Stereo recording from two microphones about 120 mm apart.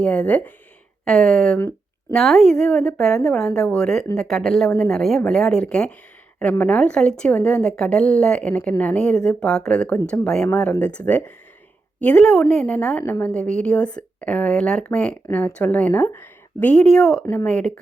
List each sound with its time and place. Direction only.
0.0 s a woman's voice: 10° left (ahead or behind)
1.5 s a sound: 25° left (ahead or behind)
2.1 s a woman's voice: centre (ahead or behind)